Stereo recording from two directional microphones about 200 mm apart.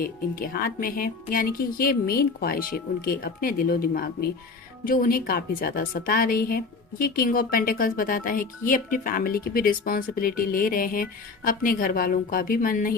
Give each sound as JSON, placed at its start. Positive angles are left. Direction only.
{"t": 0.0, "sound": "speech", "side_deg": 45}